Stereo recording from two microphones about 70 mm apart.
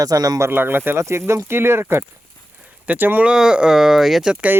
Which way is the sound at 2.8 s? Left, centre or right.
Right.